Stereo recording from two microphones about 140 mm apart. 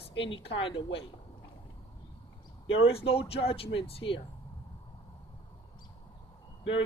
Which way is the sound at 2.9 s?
40° left (ahead or behind).